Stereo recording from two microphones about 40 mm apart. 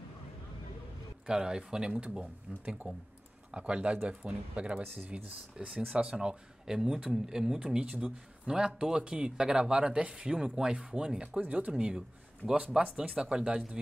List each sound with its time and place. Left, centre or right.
1.2 s speech: centre
12.5 s speech: right